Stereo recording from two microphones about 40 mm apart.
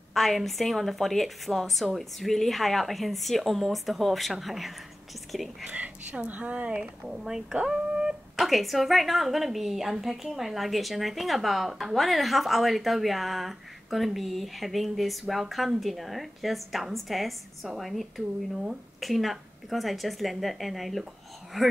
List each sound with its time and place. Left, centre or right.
0.1 s a woman's voice: centre
5.7 s speech: right; by 8.2 s centre
8.4 s a woman's voice: centre
18.5 s speech: centre
18.9 s a woman's voice: centre